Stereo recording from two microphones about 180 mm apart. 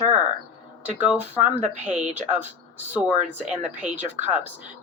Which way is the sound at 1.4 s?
40° right (ahead or behind).